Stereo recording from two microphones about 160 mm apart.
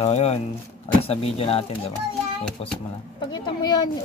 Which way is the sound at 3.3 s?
25° left (ahead or behind).